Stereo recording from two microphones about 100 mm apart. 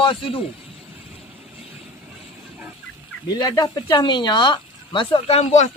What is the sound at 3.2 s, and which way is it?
Speech, 40° left (ahead or behind).